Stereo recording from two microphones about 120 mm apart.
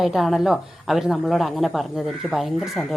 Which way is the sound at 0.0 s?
Centre (ahead or behind).